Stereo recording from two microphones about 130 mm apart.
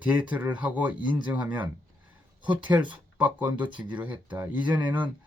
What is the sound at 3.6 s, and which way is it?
Speech, 35° right (ahead or behind).